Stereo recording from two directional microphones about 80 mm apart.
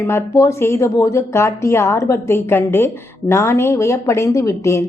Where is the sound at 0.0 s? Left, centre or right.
Left.